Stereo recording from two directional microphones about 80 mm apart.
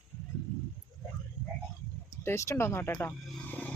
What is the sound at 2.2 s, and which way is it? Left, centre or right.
Speech, left.